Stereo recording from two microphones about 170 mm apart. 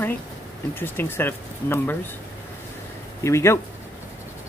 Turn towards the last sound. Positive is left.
turn(degrees=15)  # may be behind; listen again after turning